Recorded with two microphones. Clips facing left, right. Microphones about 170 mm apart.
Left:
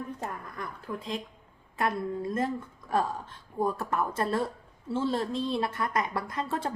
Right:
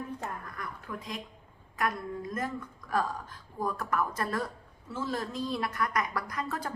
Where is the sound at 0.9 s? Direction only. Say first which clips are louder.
Left 7 dB; 30° left (ahead or behind).